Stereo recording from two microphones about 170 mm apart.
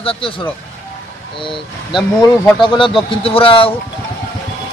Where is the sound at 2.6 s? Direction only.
30° left (ahead or behind).